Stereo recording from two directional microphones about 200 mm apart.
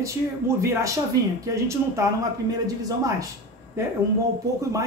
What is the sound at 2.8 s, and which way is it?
Speech, 20° right (ahead or behind).